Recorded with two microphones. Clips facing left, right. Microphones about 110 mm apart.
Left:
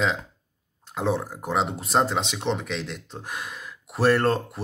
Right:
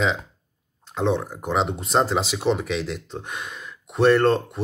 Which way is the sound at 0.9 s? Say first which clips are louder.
Right 3 dB; 5° left (ahead or behind).